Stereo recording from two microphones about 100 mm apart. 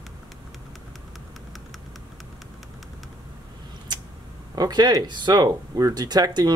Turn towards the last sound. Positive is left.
turn(degrees=-40)  # may be behind; listen again after turning